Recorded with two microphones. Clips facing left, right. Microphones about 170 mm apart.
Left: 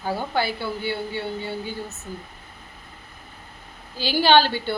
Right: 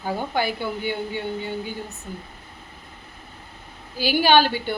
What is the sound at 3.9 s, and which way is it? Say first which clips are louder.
Speech: even; 10° right (ahead or behind).